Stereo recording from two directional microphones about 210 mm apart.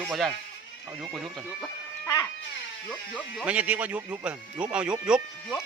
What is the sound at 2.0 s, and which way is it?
Cat, 15° left (ahead or behind).